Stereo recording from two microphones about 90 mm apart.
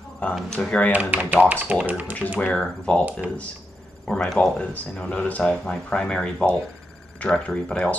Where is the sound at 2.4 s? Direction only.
10° left (ahead or behind).